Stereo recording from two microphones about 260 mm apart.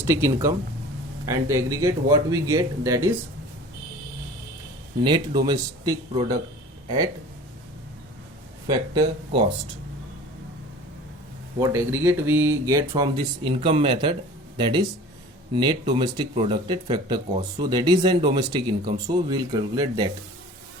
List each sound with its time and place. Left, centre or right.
0.0 s speech: centre
5.0 s speech: centre
8.6 s speech: centre
11.6 s speech: centre